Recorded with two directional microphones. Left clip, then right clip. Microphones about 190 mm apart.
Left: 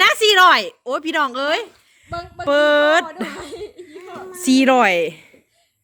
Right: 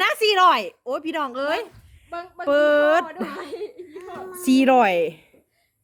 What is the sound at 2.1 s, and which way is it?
Mantra, 50° left (ahead or behind).